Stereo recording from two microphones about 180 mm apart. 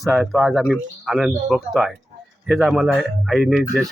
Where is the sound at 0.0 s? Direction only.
Centre (ahead or behind).